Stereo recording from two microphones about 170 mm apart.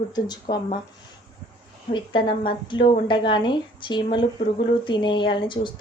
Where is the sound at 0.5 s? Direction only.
30° left (ahead or behind).